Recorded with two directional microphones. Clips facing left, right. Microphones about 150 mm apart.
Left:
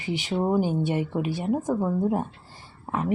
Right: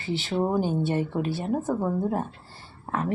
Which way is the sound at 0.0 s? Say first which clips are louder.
Even; 15° left (ahead or behind).